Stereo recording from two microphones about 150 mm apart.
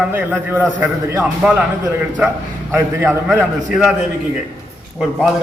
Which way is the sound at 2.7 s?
15° right (ahead or behind).